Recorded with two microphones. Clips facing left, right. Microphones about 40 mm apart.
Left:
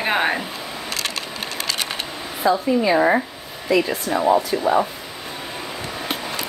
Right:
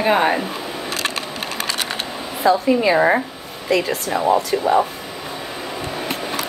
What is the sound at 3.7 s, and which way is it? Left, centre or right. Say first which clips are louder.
Speech: even; right.